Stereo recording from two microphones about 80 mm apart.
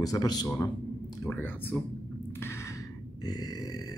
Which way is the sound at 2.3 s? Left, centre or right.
Left.